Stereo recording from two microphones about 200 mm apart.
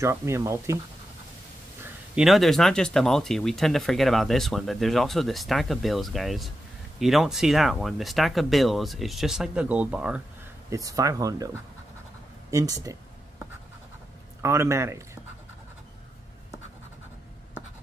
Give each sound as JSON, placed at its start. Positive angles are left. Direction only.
{"t": 0.0, "sound": "speech", "side_deg": -15}
{"t": 2.1, "sound": "speech", "side_deg": 0}
{"t": 10.7, "sound": "speech", "side_deg": -15}
{"t": 14.4, "sound": "speech", "side_deg": -15}